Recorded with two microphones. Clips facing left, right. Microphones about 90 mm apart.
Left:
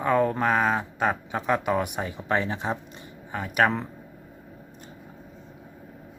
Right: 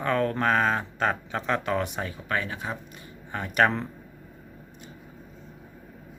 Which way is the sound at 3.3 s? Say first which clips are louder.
Even; 5° left (ahead or behind).